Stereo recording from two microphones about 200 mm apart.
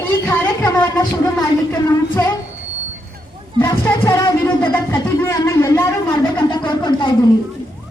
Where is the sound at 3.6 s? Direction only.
15° left (ahead or behind).